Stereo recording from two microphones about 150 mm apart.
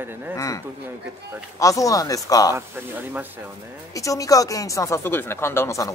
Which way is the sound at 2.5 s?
15° right (ahead or behind).